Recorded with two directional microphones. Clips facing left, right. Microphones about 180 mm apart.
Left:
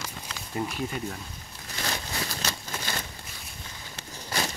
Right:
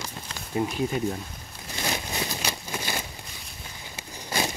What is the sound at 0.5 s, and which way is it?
Speech, 20° right (ahead or behind).